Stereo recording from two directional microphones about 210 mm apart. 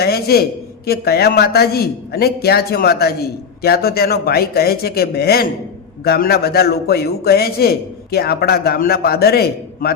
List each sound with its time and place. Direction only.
0.0 s a man's voice: 45° left (ahead or behind)